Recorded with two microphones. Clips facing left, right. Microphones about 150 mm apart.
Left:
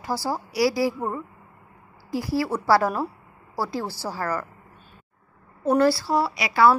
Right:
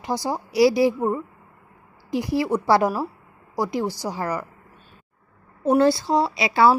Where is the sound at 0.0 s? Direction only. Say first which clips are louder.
Right 2 dB; 20° right (ahead or behind).